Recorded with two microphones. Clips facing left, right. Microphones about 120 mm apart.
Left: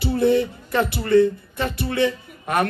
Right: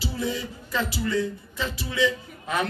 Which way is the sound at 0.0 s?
60° left (ahead or behind).